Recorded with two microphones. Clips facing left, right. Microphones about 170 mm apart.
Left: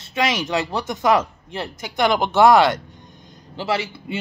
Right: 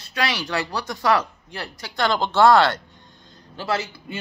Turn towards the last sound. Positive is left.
turn(degrees=20)  # may be behind; listen again after turning